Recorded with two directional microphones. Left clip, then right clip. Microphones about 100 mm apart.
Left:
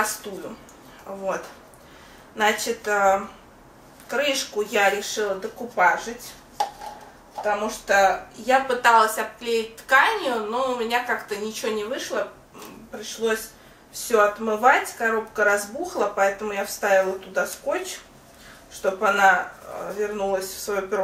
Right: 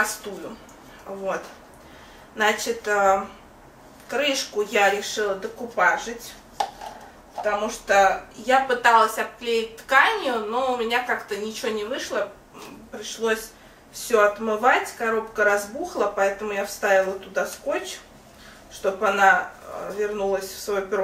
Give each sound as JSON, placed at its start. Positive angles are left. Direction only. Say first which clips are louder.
{"t": 1.1, "sound": "speech", "louder": "right 1 dB", "side_deg": 0}
{"t": 2.3, "sound": "speech", "louder": "even", "side_deg": 5}
{"t": 6.6, "sound": "a sound", "louder": "left 1 dB", "side_deg": 0}
{"t": 7.4, "sound": "speech", "louder": "even", "side_deg": 5}